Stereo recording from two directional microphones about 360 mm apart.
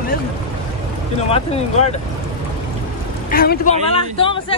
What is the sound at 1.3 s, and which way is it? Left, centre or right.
Speech, centre.